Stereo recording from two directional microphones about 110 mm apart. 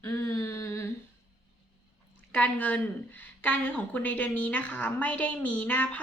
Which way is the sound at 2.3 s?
10° left (ahead or behind).